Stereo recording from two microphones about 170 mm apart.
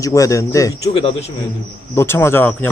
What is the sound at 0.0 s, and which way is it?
Speech, 20° left (ahead or behind).